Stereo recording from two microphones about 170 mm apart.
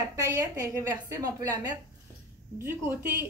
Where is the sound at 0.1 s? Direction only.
15° right (ahead or behind).